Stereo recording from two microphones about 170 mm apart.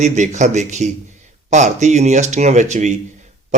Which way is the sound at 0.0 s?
45° right (ahead or behind).